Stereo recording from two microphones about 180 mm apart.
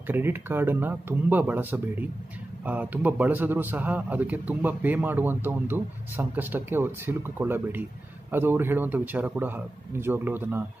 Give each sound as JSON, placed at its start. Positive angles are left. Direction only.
{"t": 0.0, "sound": "speech", "side_deg": -10}